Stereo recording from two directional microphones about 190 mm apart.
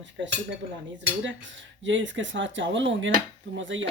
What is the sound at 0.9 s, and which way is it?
Speech, 75° right (ahead or behind).